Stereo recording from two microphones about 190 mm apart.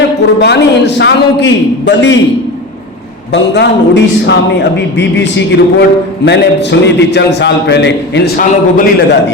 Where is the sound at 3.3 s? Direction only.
65° left (ahead or behind).